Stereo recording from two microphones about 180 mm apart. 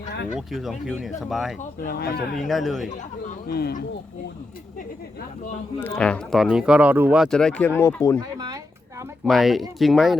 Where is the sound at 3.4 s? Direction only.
60° left (ahead or behind).